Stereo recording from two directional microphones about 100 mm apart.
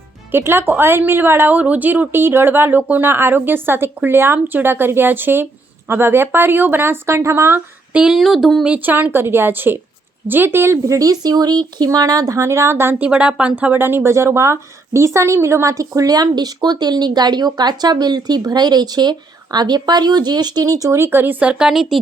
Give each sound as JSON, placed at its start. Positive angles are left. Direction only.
{"t": 0.3, "sound": "a woman's voice", "side_deg": -20}
{"t": 7.9, "sound": "a sound", "side_deg": -5}
{"t": 8.6, "sound": "a woman's voice", "side_deg": -15}
{"t": 13.1, "sound": "speech", "side_deg": -10}